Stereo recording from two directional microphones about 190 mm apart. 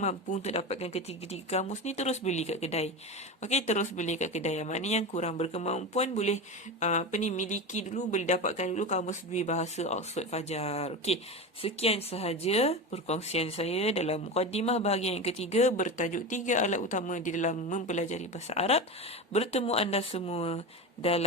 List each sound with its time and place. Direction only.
0.0 s speech: 35° left (ahead or behind)